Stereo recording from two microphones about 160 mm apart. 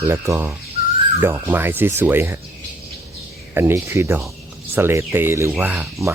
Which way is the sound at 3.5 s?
15° right (ahead or behind).